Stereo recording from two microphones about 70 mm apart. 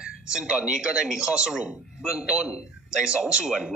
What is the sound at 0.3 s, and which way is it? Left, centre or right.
Speech, centre.